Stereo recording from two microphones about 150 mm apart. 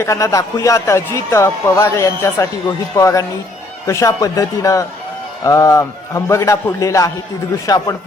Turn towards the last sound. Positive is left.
turn(degrees=25)  # may be behind; listen again after turning